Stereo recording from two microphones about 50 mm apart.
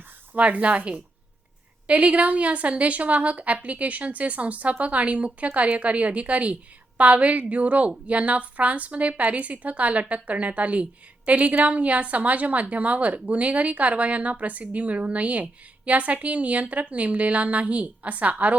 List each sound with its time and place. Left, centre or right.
0.3 s a woman's voice: right